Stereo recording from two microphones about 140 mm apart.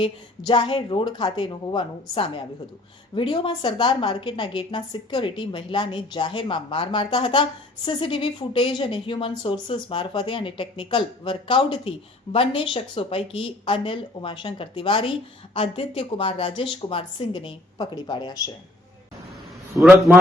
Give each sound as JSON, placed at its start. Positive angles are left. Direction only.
{"t": 0.0, "sound": "speech", "side_deg": 40}